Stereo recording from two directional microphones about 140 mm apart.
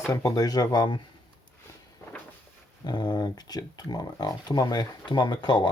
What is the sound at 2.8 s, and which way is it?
Speech, 30° left (ahead or behind).